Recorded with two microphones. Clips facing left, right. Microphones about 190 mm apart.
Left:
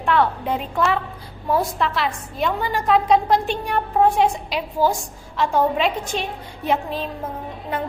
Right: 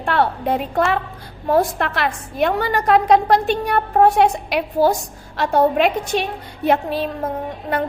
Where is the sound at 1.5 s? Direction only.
60° right (ahead or behind).